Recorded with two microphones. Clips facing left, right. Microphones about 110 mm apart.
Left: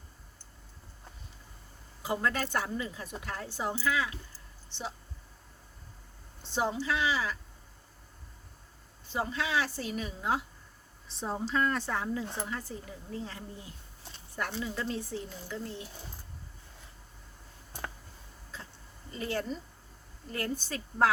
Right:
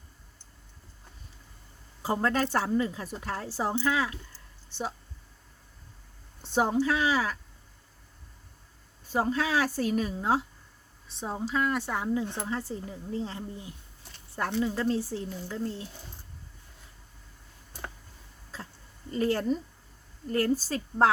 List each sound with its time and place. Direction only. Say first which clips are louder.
2.0 s speech: right 4 dB; 35° right (ahead or behind)
6.5 s speech: right 5 dB; 50° right (ahead or behind)
9.0 s speech: right 5 dB; 40° right (ahead or behind)
11.2 s speech: right 1 dB; 5° right (ahead or behind)
12.5 s speech: right 5 dB; 25° right (ahead or behind)
19.2 s speech: right 7 dB; 40° right (ahead or behind)